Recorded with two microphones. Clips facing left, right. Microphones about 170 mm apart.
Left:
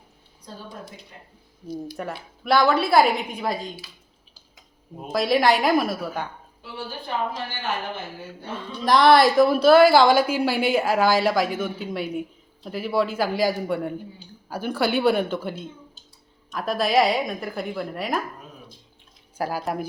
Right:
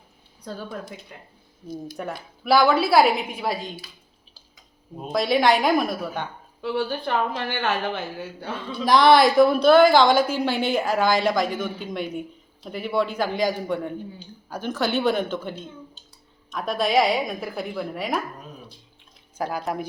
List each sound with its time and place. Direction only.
2.0 s a woman's voice: centre (ahead or behind)
5.0 s a woman's voice: centre (ahead or behind)
6.6 s speech: 70° right (ahead or behind)
8.8 s a woman's voice: centre (ahead or behind)
19.4 s a woman's voice: 5° left (ahead or behind)